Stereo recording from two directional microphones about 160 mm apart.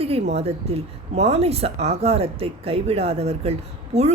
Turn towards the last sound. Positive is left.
turn(degrees=-40)  # may be behind; listen again after turning